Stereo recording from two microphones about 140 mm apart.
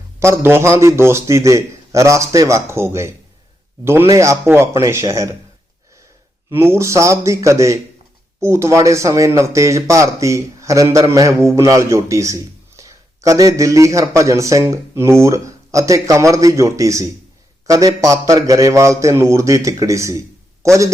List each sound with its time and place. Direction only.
0.2 s a man's voice: 20° right (ahead or behind)
4.1 s a man's voice: 20° right (ahead or behind)
6.5 s a man's voice: 15° right (ahead or behind)